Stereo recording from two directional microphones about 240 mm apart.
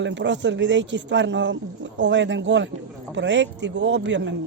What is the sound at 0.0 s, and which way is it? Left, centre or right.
A man's voice, right.